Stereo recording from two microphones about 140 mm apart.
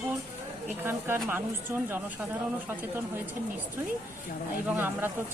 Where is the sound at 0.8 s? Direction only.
15° right (ahead or behind).